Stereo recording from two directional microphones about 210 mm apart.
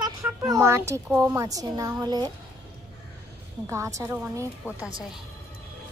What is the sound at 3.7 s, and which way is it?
A woman's voice, 15° right (ahead or behind).